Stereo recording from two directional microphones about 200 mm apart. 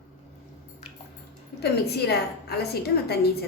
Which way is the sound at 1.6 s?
55° left (ahead or behind).